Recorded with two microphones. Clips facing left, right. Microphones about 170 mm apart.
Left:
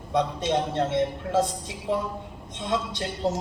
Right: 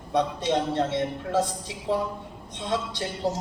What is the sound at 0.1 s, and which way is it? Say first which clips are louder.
A man's voice: even; 20° left (ahead or behind).